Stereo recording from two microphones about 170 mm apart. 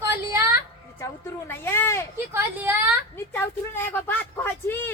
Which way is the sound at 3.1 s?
15° left (ahead or behind).